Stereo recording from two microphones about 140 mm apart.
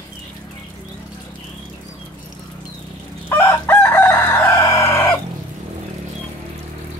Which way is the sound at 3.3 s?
15° left (ahead or behind).